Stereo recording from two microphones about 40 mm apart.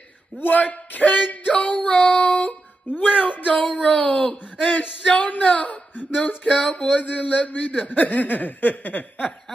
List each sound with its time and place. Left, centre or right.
0.4 s a man's voice: left
2.9 s speech: left
3.2 s a man's voice: left